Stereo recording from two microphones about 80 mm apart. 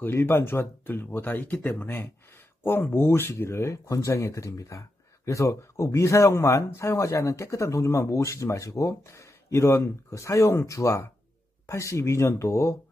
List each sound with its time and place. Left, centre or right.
0.0 s speech: left